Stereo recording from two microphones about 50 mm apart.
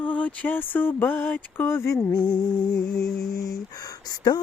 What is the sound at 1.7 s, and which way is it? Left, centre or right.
Speech, left.